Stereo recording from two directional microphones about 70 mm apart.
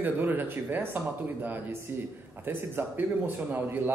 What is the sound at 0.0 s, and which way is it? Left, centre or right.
Speech, right.